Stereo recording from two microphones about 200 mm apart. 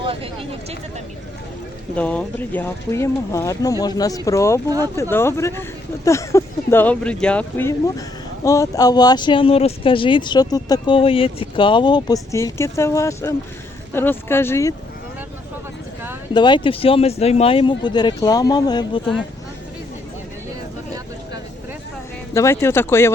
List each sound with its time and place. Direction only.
0.0 s a sound: 25° right (ahead or behind)
2.0 s speech: 5° left (ahead or behind)
16.3 s speech: 25° left (ahead or behind)
22.4 s speech: 15° left (ahead or behind)